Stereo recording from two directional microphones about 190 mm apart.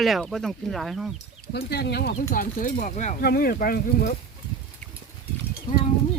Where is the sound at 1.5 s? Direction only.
60° left (ahead or behind).